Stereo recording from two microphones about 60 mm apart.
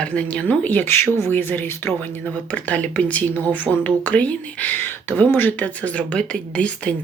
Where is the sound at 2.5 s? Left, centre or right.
Left.